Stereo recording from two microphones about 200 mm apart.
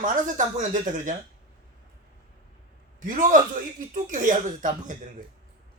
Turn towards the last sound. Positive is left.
turn(degrees=-40)  # may be behind; listen again after turning